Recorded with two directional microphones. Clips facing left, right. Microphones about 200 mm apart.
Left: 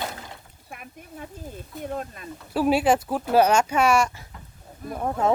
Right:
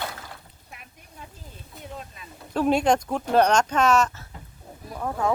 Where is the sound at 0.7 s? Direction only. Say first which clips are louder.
Left 9 dB; 55° left (ahead or behind).